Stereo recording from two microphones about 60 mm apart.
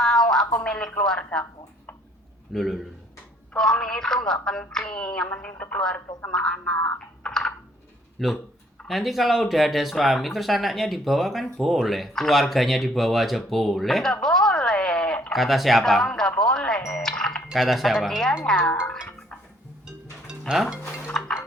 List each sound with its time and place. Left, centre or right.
0.0 s a sound: centre
0.6 s a woman's voice: centre
2.5 s a woman's voice: centre
7.2 s computer keyboard: centre
8.2 s speech: centre
15.3 s a woman's voice: centre
16.9 s music: centre
17.5 s a woman's voice: centre
20.5 s speech: centre